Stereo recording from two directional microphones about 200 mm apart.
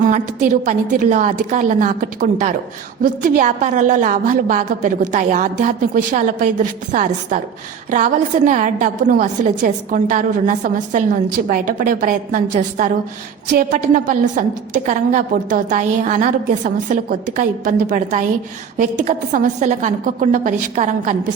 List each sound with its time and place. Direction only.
0.6 s a woman's voice: 35° right (ahead or behind)